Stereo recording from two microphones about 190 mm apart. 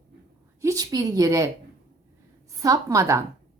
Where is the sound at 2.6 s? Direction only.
15° right (ahead or behind).